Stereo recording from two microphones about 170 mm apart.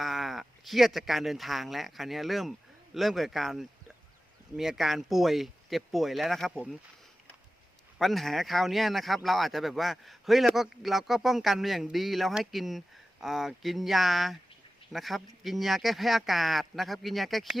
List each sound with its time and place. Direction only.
0.0 s speech: centre (ahead or behind)
7.9 s speech: centre (ahead or behind)